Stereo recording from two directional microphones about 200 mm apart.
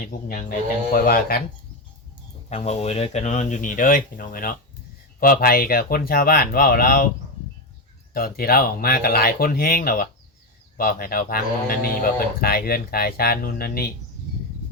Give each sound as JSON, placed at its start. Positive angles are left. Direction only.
{"t": 0.1, "sound": "speech", "side_deg": 45}
{"t": 2.5, "sound": "speech", "side_deg": 30}
{"t": 8.1, "sound": "speech", "side_deg": 50}